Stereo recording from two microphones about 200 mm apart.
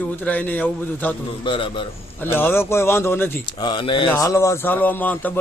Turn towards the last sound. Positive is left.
turn(degrees=10)  # may be behind; listen again after turning